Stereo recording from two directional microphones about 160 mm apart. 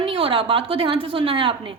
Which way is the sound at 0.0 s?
35° right (ahead or behind).